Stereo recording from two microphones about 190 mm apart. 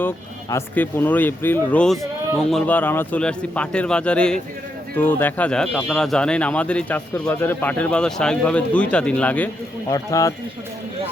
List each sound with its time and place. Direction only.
0.5 s speech: 10° left (ahead or behind)